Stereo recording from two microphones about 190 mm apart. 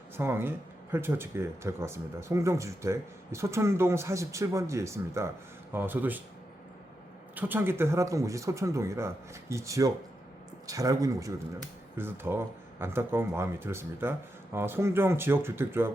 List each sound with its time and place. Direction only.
0.2 s speech: 10° right (ahead or behind)
7.3 s speech: 10° right (ahead or behind)